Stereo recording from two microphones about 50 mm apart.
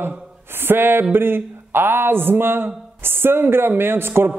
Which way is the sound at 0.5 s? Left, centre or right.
Right.